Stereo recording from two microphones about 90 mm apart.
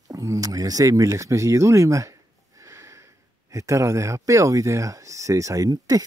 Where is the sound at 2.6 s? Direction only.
35° right (ahead or behind).